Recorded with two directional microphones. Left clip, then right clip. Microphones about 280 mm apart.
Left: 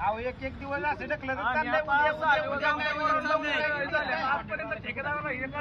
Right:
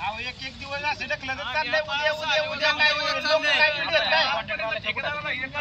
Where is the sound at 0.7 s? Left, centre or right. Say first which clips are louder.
Right 3 dB; centre.